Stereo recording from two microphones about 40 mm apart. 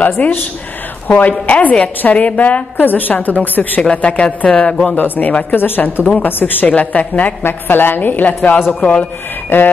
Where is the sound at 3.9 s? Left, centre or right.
Left.